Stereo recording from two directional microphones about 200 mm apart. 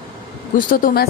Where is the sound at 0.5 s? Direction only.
45° left (ahead or behind).